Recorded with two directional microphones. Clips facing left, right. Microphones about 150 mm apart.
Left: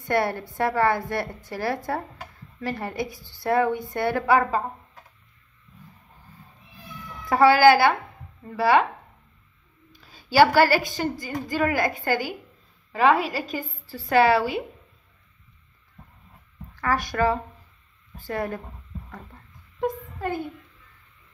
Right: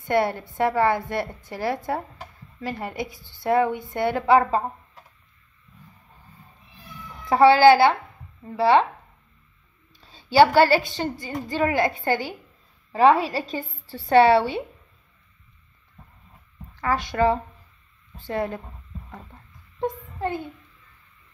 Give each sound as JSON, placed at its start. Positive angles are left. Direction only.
{"t": 0.1, "sound": "a woman's voice", "side_deg": -20}
{"t": 7.2, "sound": "a woman's voice", "side_deg": -25}
{"t": 9.9, "sound": "a woman's voice", "side_deg": -25}
{"t": 16.8, "sound": "a woman's voice", "side_deg": -20}
{"t": 19.8, "sound": "a sound", "side_deg": -25}